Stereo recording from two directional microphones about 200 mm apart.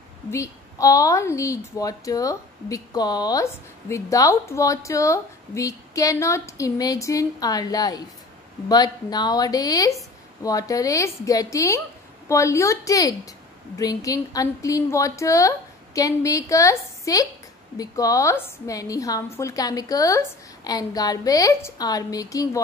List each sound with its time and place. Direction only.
0.3 s a woman's voice: 15° left (ahead or behind)